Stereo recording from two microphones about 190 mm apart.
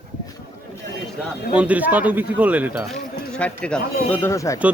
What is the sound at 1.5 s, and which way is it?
Speech, 10° right (ahead or behind).